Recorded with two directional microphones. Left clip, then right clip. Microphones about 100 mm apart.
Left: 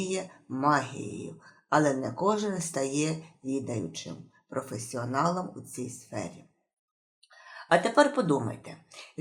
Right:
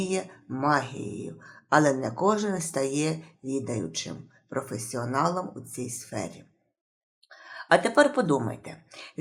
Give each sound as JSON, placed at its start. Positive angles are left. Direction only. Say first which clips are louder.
{"t": 0.0, "sound": "speech", "louder": "right 3 dB", "side_deg": -25}